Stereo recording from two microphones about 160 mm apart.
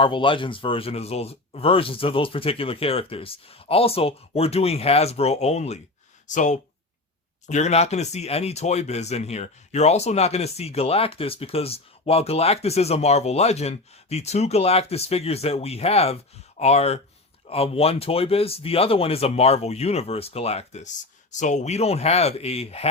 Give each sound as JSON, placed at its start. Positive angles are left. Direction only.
{"t": 0.0, "sound": "speech", "side_deg": 30}